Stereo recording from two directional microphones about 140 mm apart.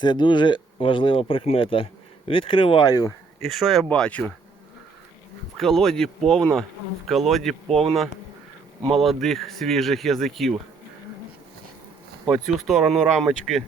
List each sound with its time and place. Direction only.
0.0 s speech: 30° left (ahead or behind)
3.4 s speech: centre (ahead or behind)
5.5 s speech: 5° left (ahead or behind)
12.2 s speech: centre (ahead or behind)